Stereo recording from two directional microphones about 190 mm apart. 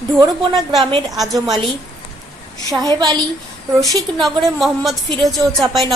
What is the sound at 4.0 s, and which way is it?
Speech, centre (ahead or behind).